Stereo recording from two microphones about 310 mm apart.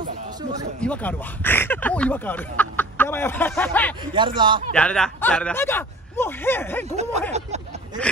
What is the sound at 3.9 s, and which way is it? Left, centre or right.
Speech, centre.